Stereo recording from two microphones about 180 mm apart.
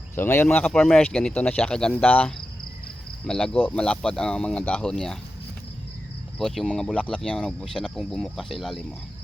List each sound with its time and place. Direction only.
0.2 s speech: 10° left (ahead or behind)
6.4 s speech: centre (ahead or behind)